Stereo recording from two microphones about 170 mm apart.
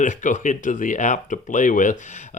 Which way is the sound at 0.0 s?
50° left (ahead or behind).